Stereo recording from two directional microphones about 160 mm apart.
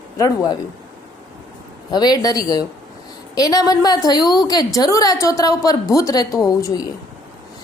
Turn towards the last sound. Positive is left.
turn(degrees=20)  # may be behind; listen again after turning